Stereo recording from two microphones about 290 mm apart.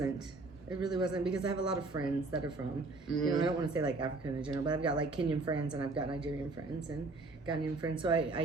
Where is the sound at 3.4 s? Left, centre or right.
Centre.